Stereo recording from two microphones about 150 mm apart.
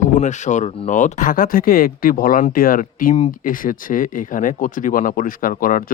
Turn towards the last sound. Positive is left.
turn(degrees=70)  # may be behind; listen again after turning